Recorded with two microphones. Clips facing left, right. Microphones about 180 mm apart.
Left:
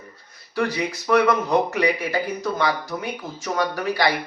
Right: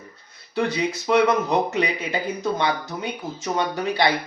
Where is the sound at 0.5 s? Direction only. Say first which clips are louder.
Right 1 dB; 20° right (ahead or behind).